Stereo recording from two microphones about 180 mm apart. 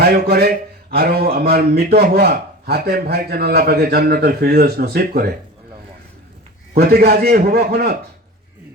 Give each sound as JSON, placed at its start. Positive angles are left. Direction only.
{"t": 0.0, "sound": "speech", "side_deg": -60}
{"t": 6.7, "sound": "speech", "side_deg": -60}